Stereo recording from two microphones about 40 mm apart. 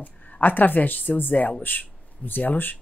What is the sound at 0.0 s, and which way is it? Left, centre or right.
A woman's voice, left.